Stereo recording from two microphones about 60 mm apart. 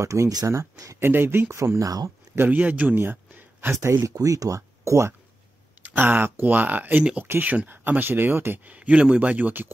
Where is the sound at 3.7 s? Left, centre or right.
Right.